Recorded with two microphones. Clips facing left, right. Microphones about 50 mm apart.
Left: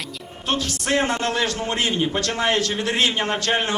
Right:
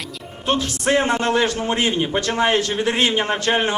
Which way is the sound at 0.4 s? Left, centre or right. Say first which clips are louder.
Right 4 dB; centre.